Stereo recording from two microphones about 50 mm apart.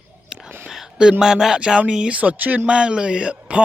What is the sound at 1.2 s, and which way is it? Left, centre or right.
A man's voice, centre.